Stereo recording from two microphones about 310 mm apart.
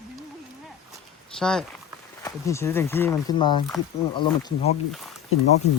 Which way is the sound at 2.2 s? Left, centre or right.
Centre.